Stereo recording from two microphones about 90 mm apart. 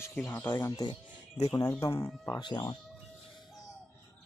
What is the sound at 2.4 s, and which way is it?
Speech, 60° left (ahead or behind).